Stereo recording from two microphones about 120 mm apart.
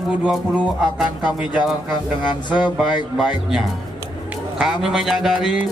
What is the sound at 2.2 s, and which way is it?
Music, 40° left (ahead or behind).